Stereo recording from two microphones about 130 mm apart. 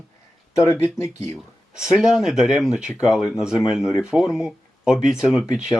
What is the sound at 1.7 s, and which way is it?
Speech, 5° right (ahead or behind).